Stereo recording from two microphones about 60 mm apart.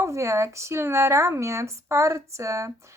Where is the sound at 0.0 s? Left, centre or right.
Right.